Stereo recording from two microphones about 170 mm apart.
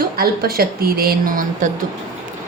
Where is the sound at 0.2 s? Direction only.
60° right (ahead or behind).